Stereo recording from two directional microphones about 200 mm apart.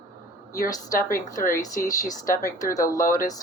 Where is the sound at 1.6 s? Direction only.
15° left (ahead or behind).